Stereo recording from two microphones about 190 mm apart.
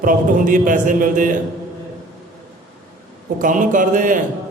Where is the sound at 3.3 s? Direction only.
45° right (ahead or behind).